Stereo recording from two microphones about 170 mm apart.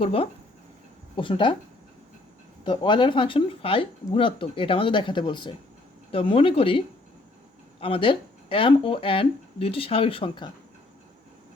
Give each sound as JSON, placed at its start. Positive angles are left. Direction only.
{"t": 0.0, "sound": "speech", "side_deg": 35}
{"t": 2.6, "sound": "speech", "side_deg": 30}